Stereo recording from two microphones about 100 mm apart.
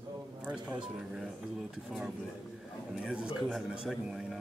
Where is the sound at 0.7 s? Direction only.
5° right (ahead or behind).